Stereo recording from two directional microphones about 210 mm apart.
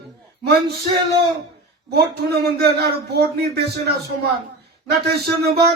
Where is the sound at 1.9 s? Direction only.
50° right (ahead or behind).